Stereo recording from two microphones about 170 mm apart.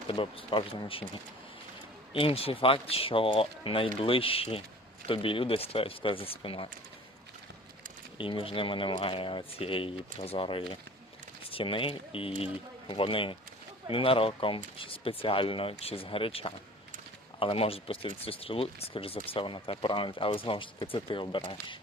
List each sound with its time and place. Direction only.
0.1 s speech: 30° left (ahead or behind)
2.1 s speech: 35° left (ahead or behind)
8.2 s speech: 30° left (ahead or behind)